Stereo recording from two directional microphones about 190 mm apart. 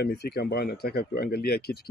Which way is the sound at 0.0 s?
60° left (ahead or behind).